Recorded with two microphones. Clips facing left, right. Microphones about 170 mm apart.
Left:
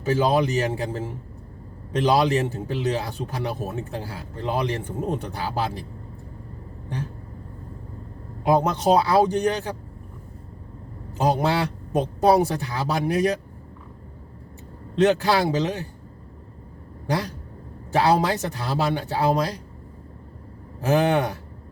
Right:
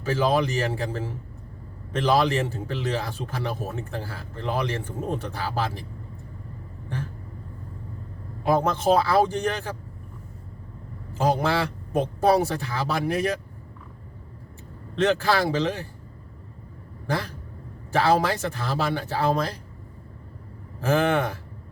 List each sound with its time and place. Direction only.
0.0 s a man's voice: 20° left (ahead or behind)
8.4 s a man's voice: 20° left (ahead or behind)
11.2 s speech: 20° left (ahead or behind)
14.9 s a man's voice: 20° left (ahead or behind)
17.1 s a man's voice: 15° left (ahead or behind)
20.8 s a man's voice: 15° left (ahead or behind)